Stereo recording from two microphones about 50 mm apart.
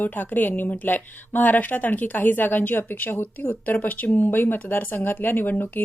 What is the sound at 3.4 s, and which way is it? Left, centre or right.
A woman's voice, left.